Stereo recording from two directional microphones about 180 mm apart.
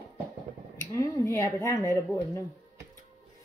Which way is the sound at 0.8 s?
15° left (ahead or behind).